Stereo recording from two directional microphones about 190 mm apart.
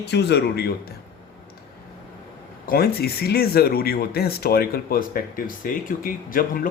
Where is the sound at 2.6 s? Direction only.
50° left (ahead or behind).